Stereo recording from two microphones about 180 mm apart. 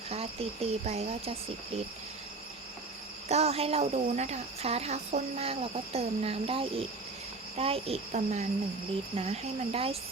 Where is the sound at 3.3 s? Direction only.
35° right (ahead or behind).